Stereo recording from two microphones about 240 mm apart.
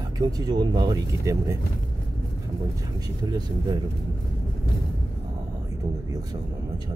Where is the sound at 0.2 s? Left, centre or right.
Centre.